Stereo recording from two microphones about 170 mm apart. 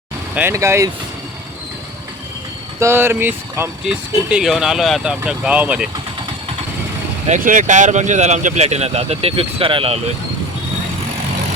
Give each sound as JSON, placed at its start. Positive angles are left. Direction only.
{"t": 0.3, "sound": "speech", "side_deg": -15}
{"t": 2.8, "sound": "speech", "side_deg": -15}
{"t": 7.3, "sound": "speech", "side_deg": -50}